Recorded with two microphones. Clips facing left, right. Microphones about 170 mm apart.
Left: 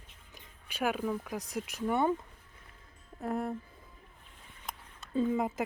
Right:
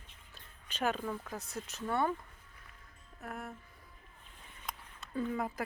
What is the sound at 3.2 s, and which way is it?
Speech, 30° left (ahead or behind).